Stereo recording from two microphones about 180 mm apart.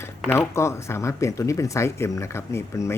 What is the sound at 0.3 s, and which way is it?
Speech, 15° left (ahead or behind).